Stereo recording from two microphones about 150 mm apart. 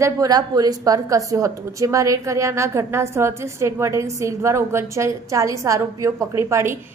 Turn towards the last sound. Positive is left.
turn(degrees=-20)  # may be behind; listen again after turning